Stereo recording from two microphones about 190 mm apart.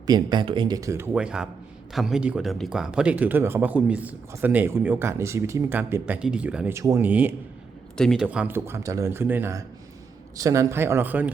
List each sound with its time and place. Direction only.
0.0 s speech: 20° right (ahead or behind)
7.9 s speech: centre (ahead or behind)